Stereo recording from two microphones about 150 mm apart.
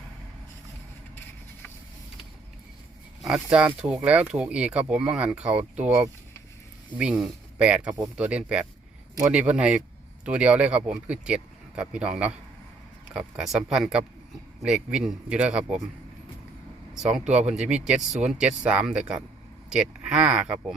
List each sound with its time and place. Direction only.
3.2 s speech: 5° right (ahead or behind)
16.9 s speech: 5° right (ahead or behind)
17.2 s speech: 50° right (ahead or behind)
17.5 s speech: 5° right (ahead or behind)